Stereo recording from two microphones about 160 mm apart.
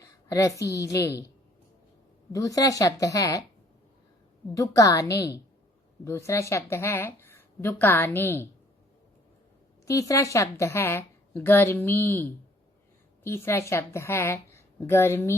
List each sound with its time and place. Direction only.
0.0 s a woman's voice: 20° left (ahead or behind)
2.3 s a woman's voice: 20° left (ahead or behind)
4.5 s a woman's voice: 20° left (ahead or behind)
9.8 s a woman's voice: 20° left (ahead or behind)